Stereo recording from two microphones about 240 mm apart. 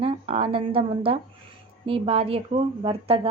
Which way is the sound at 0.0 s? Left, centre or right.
Right.